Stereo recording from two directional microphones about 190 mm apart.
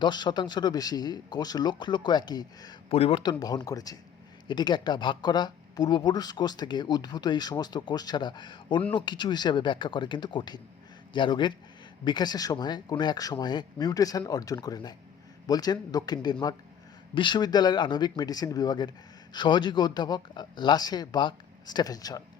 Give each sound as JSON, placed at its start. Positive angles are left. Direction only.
{"t": 0.0, "sound": "speech", "side_deg": 25}